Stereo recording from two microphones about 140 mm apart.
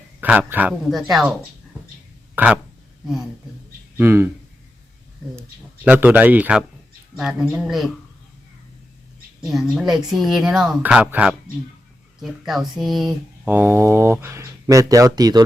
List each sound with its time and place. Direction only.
0.2 s speech: 10° right (ahead or behind)
2.3 s speech: 10° right (ahead or behind)
3.9 s speech: 15° right (ahead or behind)
5.8 s speech: 10° right (ahead or behind)
9.5 s speech: centre (ahead or behind)
13.5 s speech: 15° right (ahead or behind)